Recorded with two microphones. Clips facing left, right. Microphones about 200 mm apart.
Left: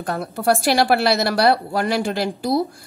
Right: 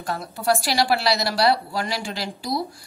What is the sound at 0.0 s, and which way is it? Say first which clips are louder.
A woman's voice: left 4 dB; 55° left (ahead or behind).